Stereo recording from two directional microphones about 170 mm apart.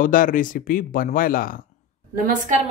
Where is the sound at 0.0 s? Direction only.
55° left (ahead or behind).